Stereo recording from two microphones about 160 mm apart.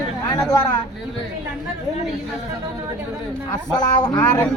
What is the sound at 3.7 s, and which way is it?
Speech, 25° left (ahead or behind).